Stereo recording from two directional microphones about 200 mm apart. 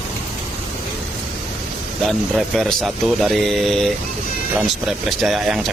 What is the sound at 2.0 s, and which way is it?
Speech, centre (ahead or behind).